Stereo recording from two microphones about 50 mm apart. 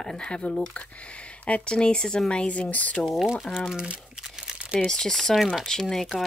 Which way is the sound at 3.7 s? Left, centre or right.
Centre.